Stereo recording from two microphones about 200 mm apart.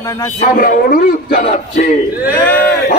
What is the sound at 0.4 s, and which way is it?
Music, 45° left (ahead or behind).